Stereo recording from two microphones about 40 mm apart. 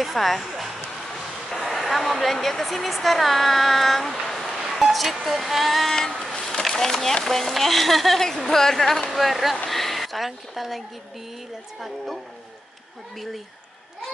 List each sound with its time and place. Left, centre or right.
0.0 s speech: centre
5.9 s speech: centre
6.4 s a sound: centre
7.2 s speech: centre